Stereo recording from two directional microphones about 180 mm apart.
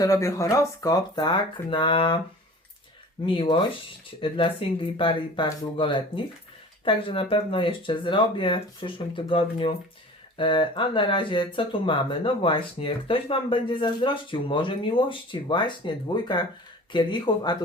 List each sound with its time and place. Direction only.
0.0 s speech: 15° left (ahead or behind)
3.2 s speech: 30° left (ahead or behind)